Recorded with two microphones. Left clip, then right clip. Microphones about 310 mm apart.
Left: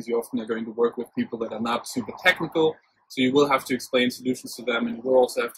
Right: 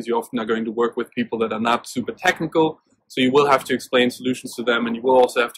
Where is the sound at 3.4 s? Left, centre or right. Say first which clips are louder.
Right 4 dB; centre.